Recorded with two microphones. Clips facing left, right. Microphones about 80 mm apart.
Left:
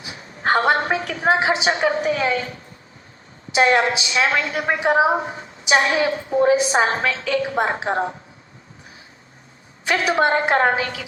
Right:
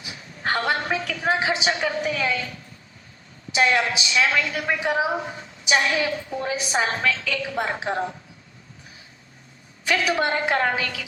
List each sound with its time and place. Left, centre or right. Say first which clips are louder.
0.0 s a woman's voice: left 5 dB; left
9.8 s a woman's voice: left 4 dB; left